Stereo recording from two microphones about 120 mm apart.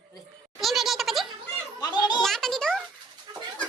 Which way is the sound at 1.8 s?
35° left (ahead or behind).